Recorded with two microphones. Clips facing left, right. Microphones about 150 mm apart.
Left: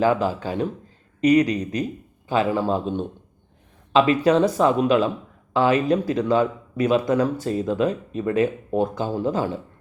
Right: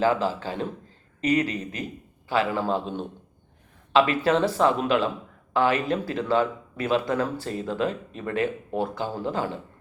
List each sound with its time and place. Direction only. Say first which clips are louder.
0.0 s speech: left 3 dB; 15° left (ahead or behind)
3.9 s speech: left 4 dB; 20° left (ahead or behind)